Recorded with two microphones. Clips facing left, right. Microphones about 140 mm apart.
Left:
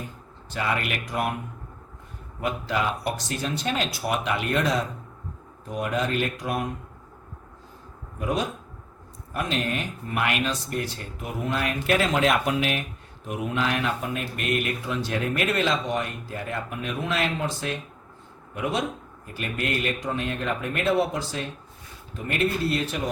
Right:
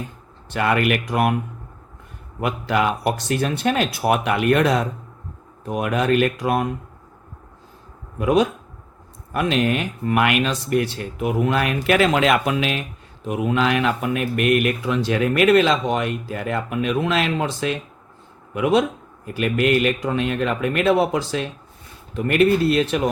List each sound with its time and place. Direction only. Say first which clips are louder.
0.5 s speech: right 8 dB; 65° right (ahead or behind)
2.4 s speech: right 5 dB; 65° right (ahead or behind); by 6.7 s 90° right
8.2 s speech: right 9 dB; 90° right
9.3 s speech: right 7 dB; 75° right (ahead or behind)
22.1 s speech: right 9 dB; 75° right (ahead or behind)